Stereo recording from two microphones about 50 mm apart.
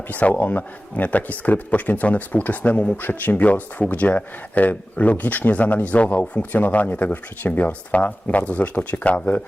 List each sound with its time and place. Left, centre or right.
0.1 s speech: left